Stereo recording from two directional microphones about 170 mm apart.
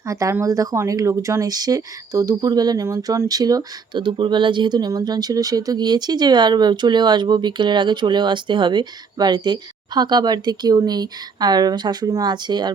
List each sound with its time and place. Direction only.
0.1 s speech: 20° right (ahead or behind)